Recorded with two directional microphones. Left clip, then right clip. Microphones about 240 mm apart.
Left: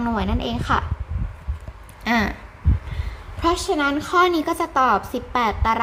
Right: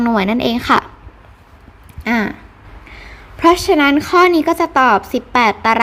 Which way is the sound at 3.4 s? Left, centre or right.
Right.